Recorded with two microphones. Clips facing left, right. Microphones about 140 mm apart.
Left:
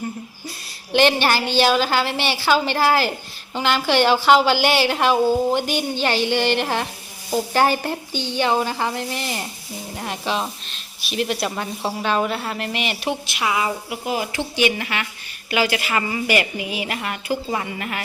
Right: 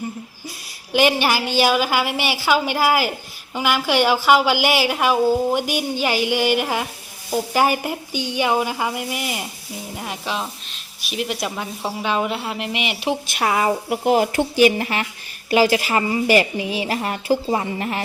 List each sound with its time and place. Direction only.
0.9 s a woman's voice: 10° right (ahead or behind)
13.2 s a woman's voice: 45° right (ahead or behind)